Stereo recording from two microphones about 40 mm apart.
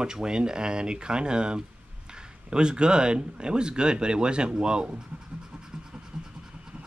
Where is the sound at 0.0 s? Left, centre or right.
Centre.